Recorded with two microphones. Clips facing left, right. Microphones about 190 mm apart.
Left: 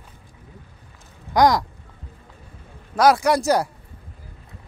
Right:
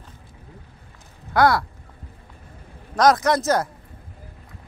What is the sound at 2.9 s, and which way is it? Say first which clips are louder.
Speech: left 1 dB; 10° left (ahead or behind).